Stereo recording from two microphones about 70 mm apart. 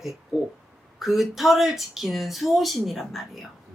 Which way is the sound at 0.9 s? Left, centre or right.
Centre.